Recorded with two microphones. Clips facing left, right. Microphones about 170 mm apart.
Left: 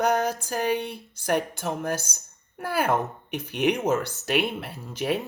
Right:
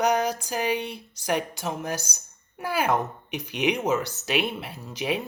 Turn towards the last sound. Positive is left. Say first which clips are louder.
# left 1 dB
turn(degrees=50)  # may be behind; listen again after turning